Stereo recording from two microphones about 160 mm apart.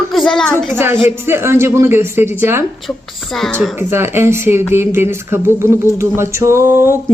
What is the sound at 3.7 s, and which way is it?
Speech, 15° right (ahead or behind).